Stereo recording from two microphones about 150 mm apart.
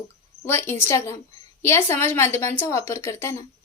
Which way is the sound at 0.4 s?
15° left (ahead or behind).